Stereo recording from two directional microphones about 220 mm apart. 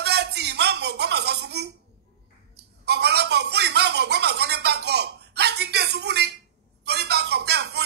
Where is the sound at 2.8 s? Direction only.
50° right (ahead or behind).